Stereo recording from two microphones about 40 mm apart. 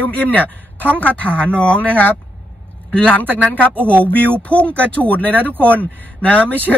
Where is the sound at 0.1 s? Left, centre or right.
Left.